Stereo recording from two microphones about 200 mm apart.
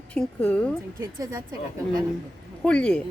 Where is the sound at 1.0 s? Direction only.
15° right (ahead or behind).